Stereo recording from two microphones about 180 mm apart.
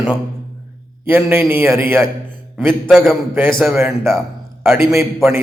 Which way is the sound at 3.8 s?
15° right (ahead or behind).